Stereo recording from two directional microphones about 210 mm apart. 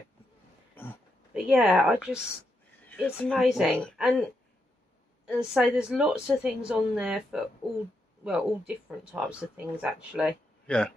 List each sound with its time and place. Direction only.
1.3 s speech: 5° right (ahead or behind)
2.9 s a woman's voice: 10° left (ahead or behind)
10.7 s a woman's voice: 5° left (ahead or behind)